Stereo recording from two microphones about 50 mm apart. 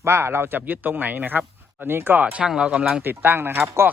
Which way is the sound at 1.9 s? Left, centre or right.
Right.